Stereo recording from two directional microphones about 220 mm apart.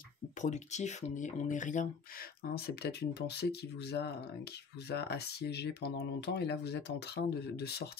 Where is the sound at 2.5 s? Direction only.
45° left (ahead or behind).